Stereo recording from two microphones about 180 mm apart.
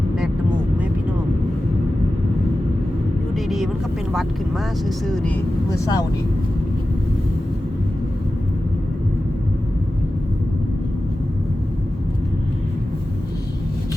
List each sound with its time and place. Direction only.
3.3 s vehicle: centre (ahead or behind)
4.1 s speech: centre (ahead or behind)
5.6 s speech: 15° left (ahead or behind)